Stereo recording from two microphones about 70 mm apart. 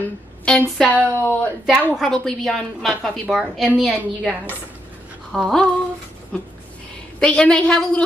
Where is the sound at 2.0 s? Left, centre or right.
Centre.